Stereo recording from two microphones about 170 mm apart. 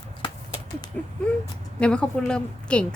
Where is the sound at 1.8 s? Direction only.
5° left (ahead or behind).